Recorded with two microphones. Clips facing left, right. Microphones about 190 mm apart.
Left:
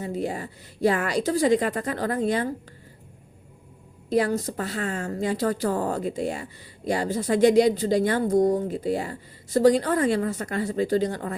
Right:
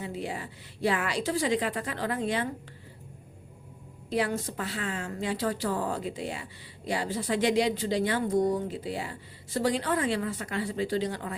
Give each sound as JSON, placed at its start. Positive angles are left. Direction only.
{"t": 0.0, "sound": "a woman's voice", "side_deg": 45}
{"t": 4.1, "sound": "a woman's voice", "side_deg": 40}